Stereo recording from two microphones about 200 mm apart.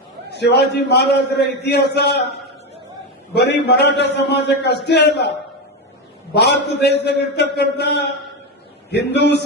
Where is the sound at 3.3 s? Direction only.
55° left (ahead or behind).